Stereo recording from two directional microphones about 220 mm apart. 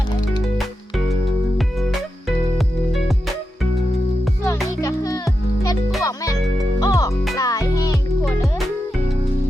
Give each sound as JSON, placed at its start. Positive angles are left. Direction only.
{"t": 4.4, "sound": "music", "side_deg": 15}
{"t": 8.2, "sound": "music", "side_deg": 0}